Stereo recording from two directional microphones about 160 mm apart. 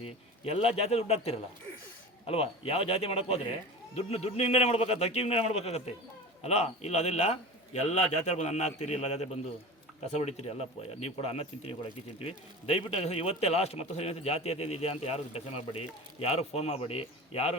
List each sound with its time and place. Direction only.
0.0 s speech: 40° left (ahead or behind)